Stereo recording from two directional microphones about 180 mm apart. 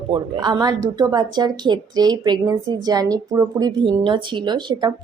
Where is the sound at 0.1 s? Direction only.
20° right (ahead or behind).